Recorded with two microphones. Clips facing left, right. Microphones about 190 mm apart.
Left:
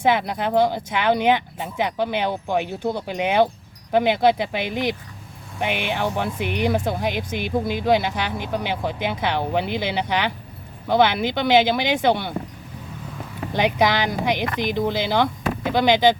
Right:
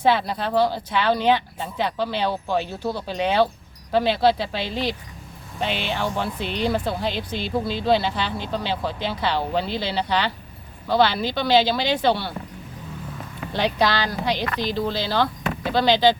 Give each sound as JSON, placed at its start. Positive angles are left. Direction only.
{"t": 0.1, "sound": "speech", "side_deg": 15}
{"t": 13.5, "sound": "speech", "side_deg": 15}